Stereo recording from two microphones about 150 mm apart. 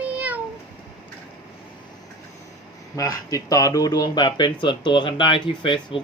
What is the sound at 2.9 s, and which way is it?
Speech, 25° left (ahead or behind).